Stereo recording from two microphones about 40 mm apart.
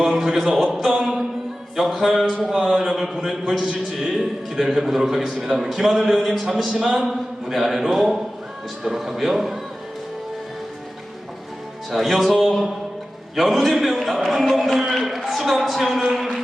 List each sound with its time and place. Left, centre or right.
0.0 s music: centre
0.4 s a man's voice: centre
0.7 s a sound: centre
0.9 s music: centre
2.6 s a man's voice: centre
6.7 s speech: centre
7.0 s a man's voice: centre
11.9 s a man's voice: centre